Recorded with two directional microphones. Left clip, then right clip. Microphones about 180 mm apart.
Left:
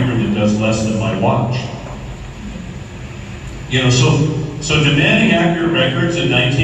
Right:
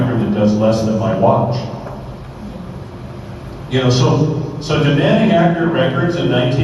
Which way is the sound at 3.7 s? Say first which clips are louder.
Even; 25° right (ahead or behind).